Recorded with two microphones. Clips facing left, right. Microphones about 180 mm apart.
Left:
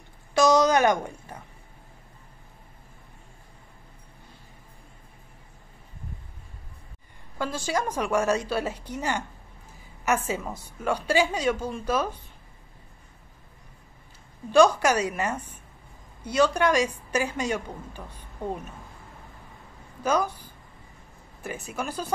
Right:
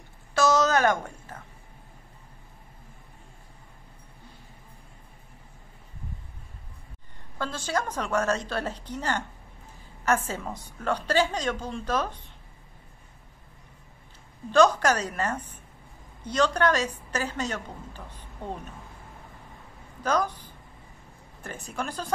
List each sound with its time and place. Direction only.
0.3 s a sound: 15° left (ahead or behind)
7.3 s a woman's voice: 10° left (ahead or behind)
14.5 s a woman's voice: 10° left (ahead or behind)
20.0 s a woman's voice: 10° left (ahead or behind)